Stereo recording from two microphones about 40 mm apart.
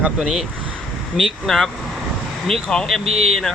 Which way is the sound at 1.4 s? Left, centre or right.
Centre.